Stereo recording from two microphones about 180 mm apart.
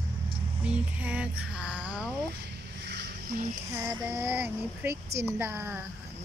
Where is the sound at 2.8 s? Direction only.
70° right (ahead or behind).